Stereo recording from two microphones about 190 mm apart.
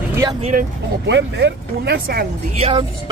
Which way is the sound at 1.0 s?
65° right (ahead or behind).